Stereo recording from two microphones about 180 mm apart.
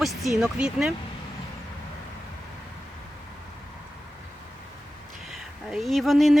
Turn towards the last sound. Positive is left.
turn(degrees=0)  # may be behind; listen again after turning